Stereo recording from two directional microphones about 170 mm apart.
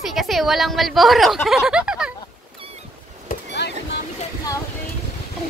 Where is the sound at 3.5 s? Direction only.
90° left.